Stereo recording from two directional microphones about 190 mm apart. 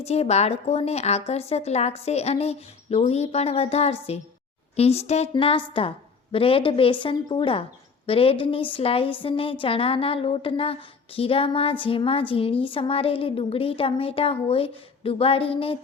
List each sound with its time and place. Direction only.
0.0 s a woman's voice: 35° left (ahead or behind)